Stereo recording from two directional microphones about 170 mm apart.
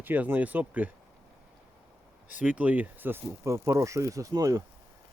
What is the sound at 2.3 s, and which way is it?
Speech, 10° right (ahead or behind).